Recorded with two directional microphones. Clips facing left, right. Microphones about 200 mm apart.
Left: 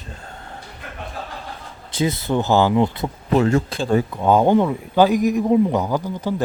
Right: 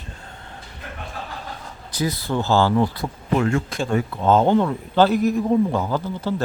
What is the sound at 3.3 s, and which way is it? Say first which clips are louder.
Speech: left 4 dB; 35° left (ahead or behind).